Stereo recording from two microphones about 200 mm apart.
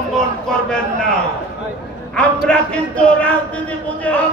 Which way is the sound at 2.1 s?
5° left (ahead or behind).